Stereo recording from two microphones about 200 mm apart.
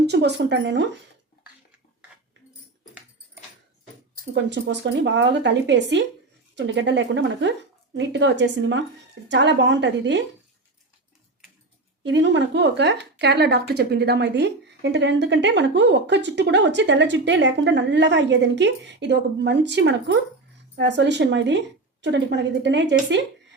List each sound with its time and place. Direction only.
0.0 s speech: 55° right (ahead or behind)
4.4 s speech: 60° right (ahead or behind)
12.0 s speech: 65° right (ahead or behind)